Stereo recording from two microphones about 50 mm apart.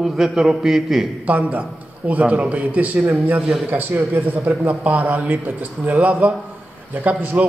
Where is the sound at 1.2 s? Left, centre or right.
Right.